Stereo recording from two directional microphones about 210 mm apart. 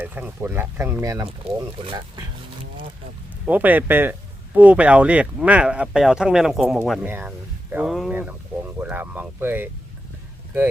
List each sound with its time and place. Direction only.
0.0 s speech: 10° right (ahead or behind)
3.4 s speech: 10° right (ahead or behind)